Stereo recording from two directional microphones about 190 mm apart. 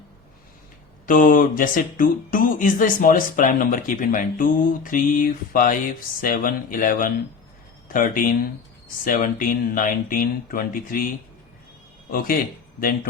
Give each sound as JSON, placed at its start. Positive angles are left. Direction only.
{"t": 1.0, "sound": "speech", "side_deg": 45}
{"t": 12.8, "sound": "speech", "side_deg": 50}